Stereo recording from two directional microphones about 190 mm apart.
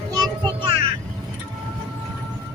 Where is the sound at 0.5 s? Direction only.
25° right (ahead or behind).